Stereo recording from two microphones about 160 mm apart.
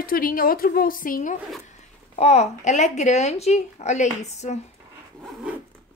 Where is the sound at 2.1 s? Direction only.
45° left (ahead or behind).